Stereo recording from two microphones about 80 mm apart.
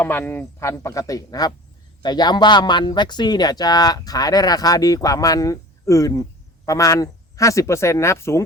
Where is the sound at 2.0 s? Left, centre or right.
Left.